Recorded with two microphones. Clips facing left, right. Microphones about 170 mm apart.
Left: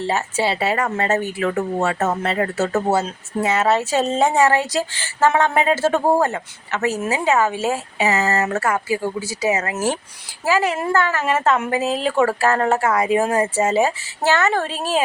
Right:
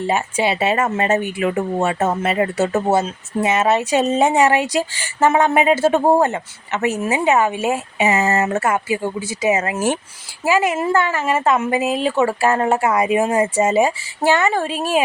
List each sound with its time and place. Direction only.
0.1 s speech: 15° right (ahead or behind)